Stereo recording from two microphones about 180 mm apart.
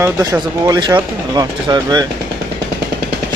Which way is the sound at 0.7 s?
25° right (ahead or behind).